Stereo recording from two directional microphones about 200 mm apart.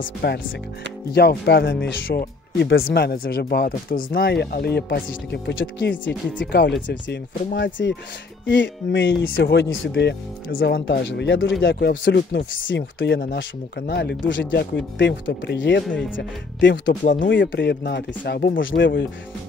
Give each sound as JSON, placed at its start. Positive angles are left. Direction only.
{"t": 0.0, "sound": "speech", "side_deg": 55}
{"t": 1.4, "sound": "speech", "side_deg": 55}
{"t": 2.9, "sound": "speech", "side_deg": 50}
{"t": 6.0, "sound": "speech", "side_deg": 5}
{"t": 6.9, "sound": "speech", "side_deg": 60}
{"t": 11.6, "sound": "speech", "side_deg": 55}
{"t": 16.7, "sound": "speech", "side_deg": 45}
{"t": 17.2, "sound": "speech", "side_deg": 65}